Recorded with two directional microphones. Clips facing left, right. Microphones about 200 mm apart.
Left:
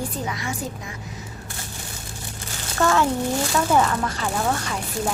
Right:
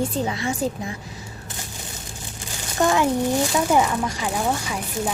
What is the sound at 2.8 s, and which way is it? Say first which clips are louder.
A child's voice: right 1 dB; 15° right (ahead or behind).